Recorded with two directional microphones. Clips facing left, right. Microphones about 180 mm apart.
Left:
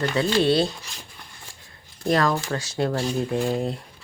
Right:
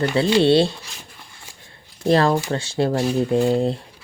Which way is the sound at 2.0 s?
30° right (ahead or behind).